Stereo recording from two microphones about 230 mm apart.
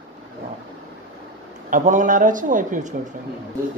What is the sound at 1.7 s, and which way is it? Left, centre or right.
A man's voice, right.